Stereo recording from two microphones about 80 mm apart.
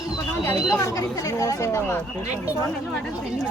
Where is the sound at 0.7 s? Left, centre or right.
Left.